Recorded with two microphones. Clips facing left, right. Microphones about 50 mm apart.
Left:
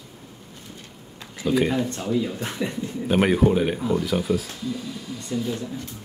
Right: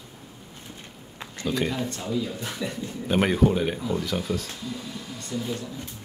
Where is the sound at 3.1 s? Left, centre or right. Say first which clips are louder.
Left 2 dB; centre.